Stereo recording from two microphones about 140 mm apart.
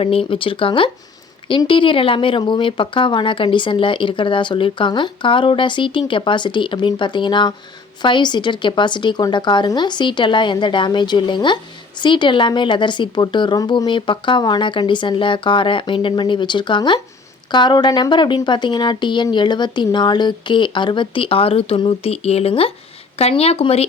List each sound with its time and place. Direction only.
0.0 s a woman's voice: 40° left (ahead or behind)